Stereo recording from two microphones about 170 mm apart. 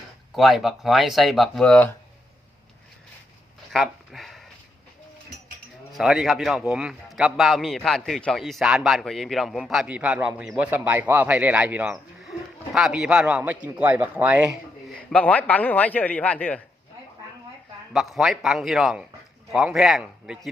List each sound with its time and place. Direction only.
0.3 s a man's voice: centre (ahead or behind)
3.7 s a sound: centre (ahead or behind)
5.9 s a man's voice: 5° right (ahead or behind)
15.1 s a man's voice: 10° left (ahead or behind)
17.9 s a man's voice: centre (ahead or behind)